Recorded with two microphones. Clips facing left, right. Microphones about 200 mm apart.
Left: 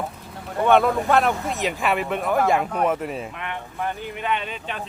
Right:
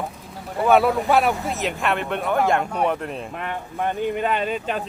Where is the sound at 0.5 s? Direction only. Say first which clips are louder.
Right 1 dB; 5° right (ahead or behind).